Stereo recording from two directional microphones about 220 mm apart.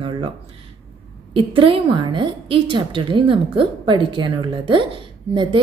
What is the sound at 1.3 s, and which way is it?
A woman's voice, 25° right (ahead or behind).